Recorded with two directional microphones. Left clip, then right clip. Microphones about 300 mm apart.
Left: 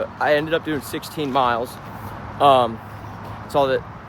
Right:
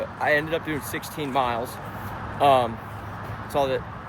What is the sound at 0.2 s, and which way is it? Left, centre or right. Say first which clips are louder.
Speech: left 4 dB; centre.